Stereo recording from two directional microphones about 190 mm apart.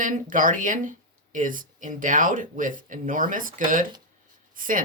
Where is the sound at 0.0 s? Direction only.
45° right (ahead or behind).